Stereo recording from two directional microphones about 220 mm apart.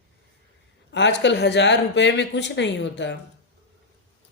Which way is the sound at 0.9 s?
55° left (ahead or behind).